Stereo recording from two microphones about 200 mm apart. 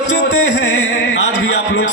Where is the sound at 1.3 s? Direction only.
60° left (ahead or behind).